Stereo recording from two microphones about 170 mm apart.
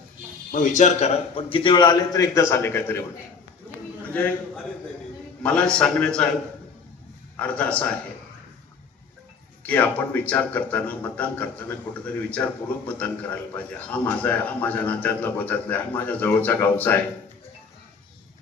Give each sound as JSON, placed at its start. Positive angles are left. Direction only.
{"t": 0.5, "sound": "a man's voice", "side_deg": 45}
{"t": 4.1, "sound": "a man's voice", "side_deg": 10}
{"t": 7.3, "sound": "speech", "side_deg": 10}
{"t": 9.6, "sound": "speech", "side_deg": 10}